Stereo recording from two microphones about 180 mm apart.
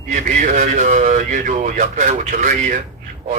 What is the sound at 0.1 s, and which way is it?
Speech, 45° right (ahead or behind).